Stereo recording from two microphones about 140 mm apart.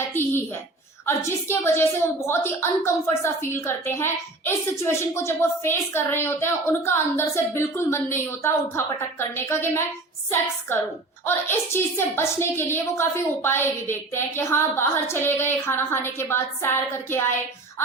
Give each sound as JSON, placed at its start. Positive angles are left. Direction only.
{"t": 0.1, "sound": "a woman's voice", "side_deg": 15}